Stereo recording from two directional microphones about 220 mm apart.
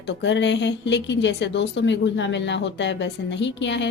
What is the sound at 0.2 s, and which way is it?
Speech, 55° left (ahead or behind).